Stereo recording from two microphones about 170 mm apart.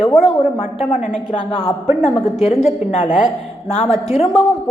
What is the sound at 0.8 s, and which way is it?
Speech, 40° left (ahead or behind).